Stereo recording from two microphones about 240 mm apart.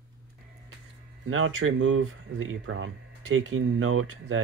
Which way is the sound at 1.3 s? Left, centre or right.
Right.